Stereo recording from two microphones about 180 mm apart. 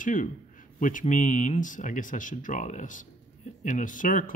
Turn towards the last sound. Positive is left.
turn(degrees=45)  # may be behind; listen again after turning